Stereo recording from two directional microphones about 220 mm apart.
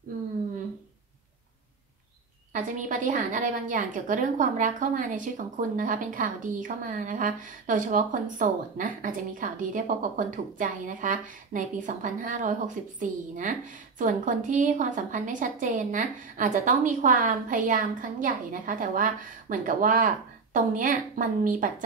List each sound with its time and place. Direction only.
2.5 s a woman's voice: 35° right (ahead or behind)